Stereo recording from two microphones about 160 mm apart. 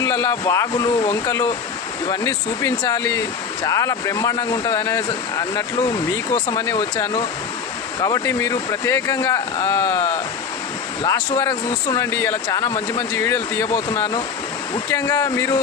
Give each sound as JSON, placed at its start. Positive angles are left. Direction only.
{"t": 0.0, "sound": "speech", "side_deg": 20}